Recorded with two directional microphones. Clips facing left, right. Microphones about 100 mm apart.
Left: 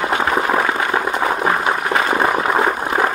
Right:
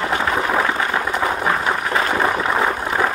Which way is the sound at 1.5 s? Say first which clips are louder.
Left 2 dB; 15° left (ahead or behind).